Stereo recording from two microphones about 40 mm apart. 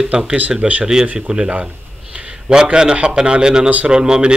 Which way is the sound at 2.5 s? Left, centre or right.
Centre.